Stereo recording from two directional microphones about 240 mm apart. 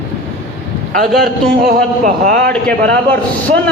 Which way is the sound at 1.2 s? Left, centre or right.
Right.